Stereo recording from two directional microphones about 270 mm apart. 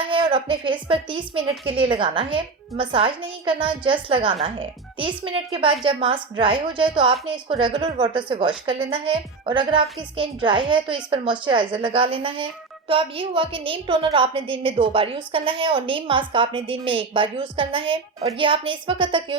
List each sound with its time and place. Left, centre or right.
0.1 s a woman's voice: centre